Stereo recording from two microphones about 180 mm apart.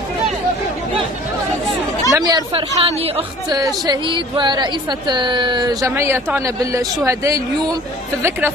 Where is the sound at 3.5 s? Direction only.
20° right (ahead or behind).